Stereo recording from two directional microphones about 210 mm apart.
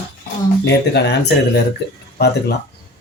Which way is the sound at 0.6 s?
55° left (ahead or behind).